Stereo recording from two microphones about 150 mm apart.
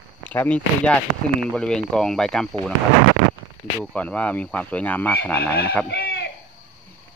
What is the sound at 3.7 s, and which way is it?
Speech, 10° left (ahead or behind).